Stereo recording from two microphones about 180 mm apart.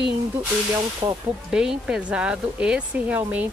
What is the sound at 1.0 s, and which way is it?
Speech, 20° right (ahead or behind).